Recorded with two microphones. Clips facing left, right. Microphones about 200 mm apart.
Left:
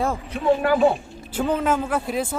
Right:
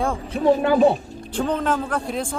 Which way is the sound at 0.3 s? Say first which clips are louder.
Right 3 dB; 40° right (ahead or behind).